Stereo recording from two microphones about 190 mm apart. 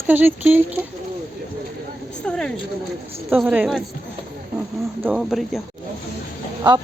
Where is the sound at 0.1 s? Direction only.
10° right (ahead or behind).